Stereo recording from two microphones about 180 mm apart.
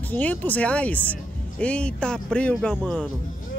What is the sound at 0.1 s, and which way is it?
A man's voice, 10° left (ahead or behind).